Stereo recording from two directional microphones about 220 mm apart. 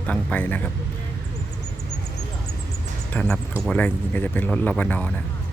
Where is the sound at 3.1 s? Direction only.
5° left (ahead or behind).